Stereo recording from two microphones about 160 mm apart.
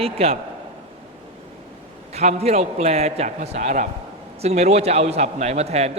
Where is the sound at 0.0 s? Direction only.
40° right (ahead or behind).